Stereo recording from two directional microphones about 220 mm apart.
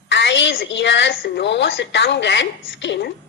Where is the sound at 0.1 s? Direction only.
55° left (ahead or behind).